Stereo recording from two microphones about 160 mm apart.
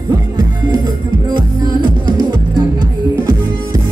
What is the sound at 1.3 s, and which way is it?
Music, 30° right (ahead or behind).